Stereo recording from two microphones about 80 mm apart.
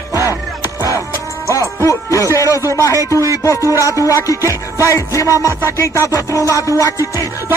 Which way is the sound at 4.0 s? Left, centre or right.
Left.